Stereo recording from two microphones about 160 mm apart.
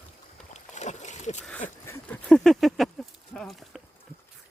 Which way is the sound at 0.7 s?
45° left (ahead or behind).